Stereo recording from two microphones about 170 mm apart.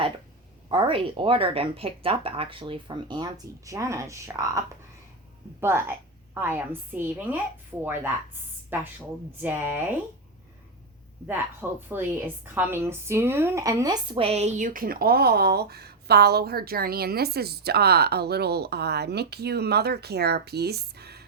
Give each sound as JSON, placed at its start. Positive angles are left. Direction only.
{"t": 0.7, "sound": "a woman's voice", "side_deg": -30}
{"t": 11.9, "sound": "speech", "side_deg": -10}